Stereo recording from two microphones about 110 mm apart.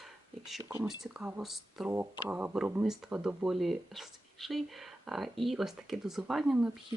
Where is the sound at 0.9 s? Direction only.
5° right (ahead or behind).